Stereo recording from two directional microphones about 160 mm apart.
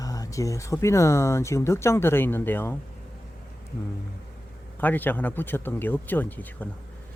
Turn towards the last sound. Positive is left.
turn(degrees=10)  # may be behind; listen again after turning